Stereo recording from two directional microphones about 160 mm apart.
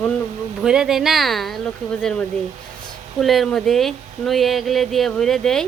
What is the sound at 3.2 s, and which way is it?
Speech, centre (ahead or behind).